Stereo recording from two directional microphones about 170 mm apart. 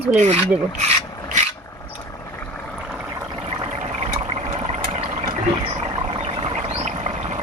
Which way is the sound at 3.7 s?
40° right (ahead or behind).